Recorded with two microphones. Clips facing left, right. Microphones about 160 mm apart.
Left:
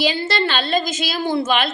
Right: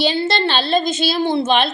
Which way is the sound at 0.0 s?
30° right (ahead or behind).